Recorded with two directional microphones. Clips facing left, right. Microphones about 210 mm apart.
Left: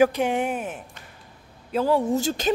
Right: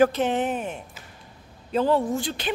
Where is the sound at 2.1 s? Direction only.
45° left (ahead or behind).